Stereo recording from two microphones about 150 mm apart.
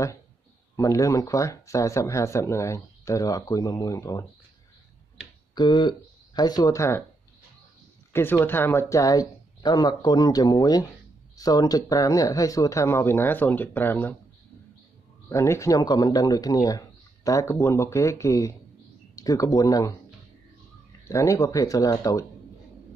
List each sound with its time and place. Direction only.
0.7 s speech: 20° left (ahead or behind)
5.5 s speech: 30° left (ahead or behind)
8.1 s speech: 15° left (ahead or behind)
15.2 s speech: 20° left (ahead or behind)
21.0 s speech: 20° left (ahead or behind)